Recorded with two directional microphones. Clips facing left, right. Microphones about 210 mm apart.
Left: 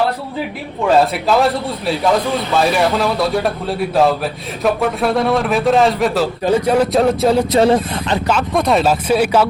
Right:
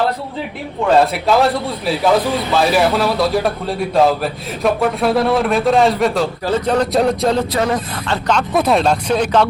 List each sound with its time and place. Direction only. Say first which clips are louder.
0.9 s a man's voice: right 1 dB; centre (ahead or behind)
2.6 s a man's voice: right 1 dB; centre (ahead or behind)
6.4 s a man's voice: left 4 dB; 10° left (ahead or behind)
7.5 s speech: left 6 dB; 25° left (ahead or behind)
8.3 s a man's voice: right 1 dB; centre (ahead or behind)